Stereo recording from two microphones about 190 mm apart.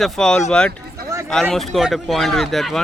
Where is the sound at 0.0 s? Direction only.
5° left (ahead or behind).